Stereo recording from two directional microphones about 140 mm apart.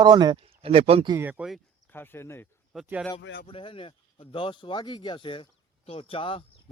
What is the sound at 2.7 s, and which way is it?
Speech, 5° right (ahead or behind).